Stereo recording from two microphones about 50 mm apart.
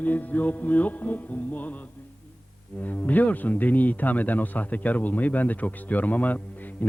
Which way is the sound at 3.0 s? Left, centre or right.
Left.